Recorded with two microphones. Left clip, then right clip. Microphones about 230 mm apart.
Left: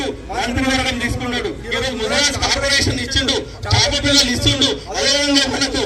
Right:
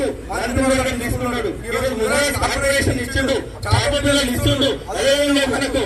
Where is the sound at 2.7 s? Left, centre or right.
Left.